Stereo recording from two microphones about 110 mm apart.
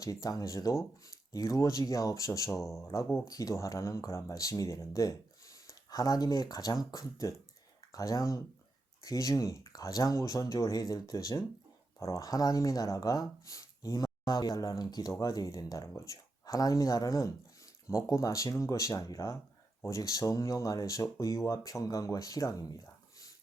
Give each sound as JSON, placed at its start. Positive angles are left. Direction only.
{"t": 0.0, "sound": "speech", "side_deg": 35}